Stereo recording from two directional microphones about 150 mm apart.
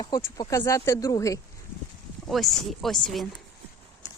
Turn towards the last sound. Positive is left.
turn(degrees=0)  # may be behind; listen again after turning